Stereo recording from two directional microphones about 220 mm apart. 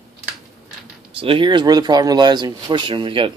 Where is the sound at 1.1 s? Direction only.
25° right (ahead or behind).